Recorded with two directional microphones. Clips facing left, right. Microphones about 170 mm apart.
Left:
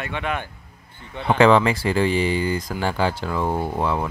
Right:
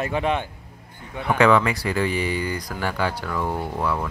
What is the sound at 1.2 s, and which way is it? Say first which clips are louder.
Speech: left 2 dB; 30° left (ahead or behind).